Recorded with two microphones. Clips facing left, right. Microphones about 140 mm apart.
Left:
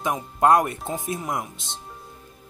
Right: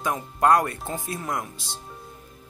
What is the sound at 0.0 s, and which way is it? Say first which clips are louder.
Speech: left 2 dB; 20° left (ahead or behind).